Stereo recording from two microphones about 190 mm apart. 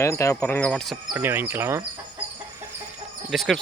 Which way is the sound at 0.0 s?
15° left (ahead or behind).